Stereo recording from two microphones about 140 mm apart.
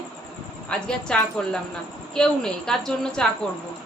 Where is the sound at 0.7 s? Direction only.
5° left (ahead or behind).